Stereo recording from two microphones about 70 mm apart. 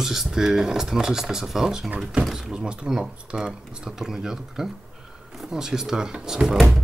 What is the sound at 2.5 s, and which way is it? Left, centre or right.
Speech, centre.